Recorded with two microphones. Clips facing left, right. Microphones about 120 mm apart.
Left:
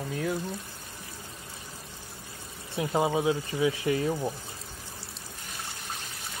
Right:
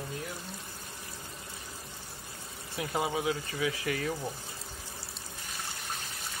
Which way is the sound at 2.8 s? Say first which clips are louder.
Left 5 dB; 25° left (ahead or behind).